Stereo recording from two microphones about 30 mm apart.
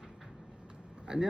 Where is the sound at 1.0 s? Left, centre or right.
Centre.